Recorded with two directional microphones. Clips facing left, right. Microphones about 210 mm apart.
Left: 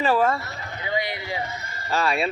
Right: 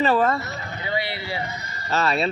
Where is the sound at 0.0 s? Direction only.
10° left (ahead or behind).